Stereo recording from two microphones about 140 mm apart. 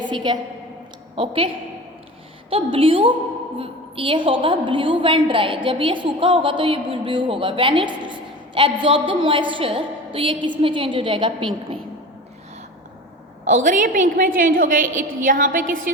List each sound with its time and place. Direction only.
0.0 s a woman's voice: 35° right (ahead or behind)
2.5 s a woman's voice: 40° right (ahead or behind)
13.4 s a woman's voice: 65° right (ahead or behind)